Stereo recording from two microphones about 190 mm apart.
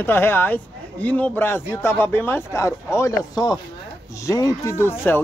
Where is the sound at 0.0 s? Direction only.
10° left (ahead or behind).